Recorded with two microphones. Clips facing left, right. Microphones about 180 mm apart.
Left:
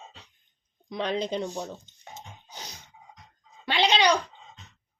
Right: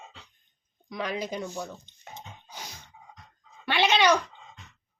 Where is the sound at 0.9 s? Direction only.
30° left (ahead or behind).